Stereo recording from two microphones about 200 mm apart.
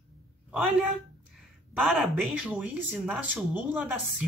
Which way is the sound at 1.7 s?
Centre (ahead or behind).